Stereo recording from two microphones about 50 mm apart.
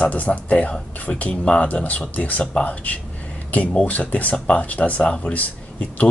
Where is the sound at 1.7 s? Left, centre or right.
Left.